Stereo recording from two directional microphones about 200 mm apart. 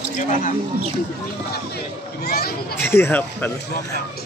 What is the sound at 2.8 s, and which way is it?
Speech, 10° left (ahead or behind).